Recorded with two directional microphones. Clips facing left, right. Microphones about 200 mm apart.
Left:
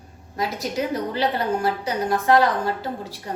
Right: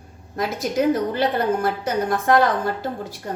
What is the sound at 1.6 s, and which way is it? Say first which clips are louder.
Speech: right 1 dB; 50° right (ahead or behind).